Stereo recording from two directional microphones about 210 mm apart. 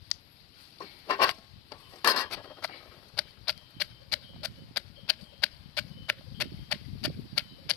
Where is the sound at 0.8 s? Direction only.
20° left (ahead or behind).